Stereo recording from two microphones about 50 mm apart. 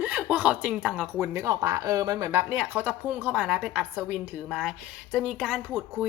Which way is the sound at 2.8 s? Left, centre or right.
Right.